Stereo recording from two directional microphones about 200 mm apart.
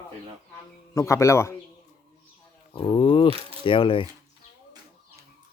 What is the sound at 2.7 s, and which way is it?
Speech, 25° left (ahead or behind).